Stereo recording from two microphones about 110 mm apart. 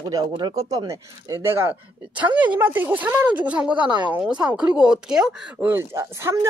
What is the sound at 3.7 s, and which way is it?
Speech, 45° right (ahead or behind).